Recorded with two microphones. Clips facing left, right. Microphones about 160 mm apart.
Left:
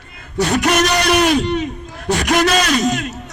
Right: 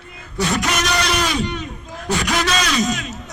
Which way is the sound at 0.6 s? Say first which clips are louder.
Left 5 dB; 50° left (ahead or behind).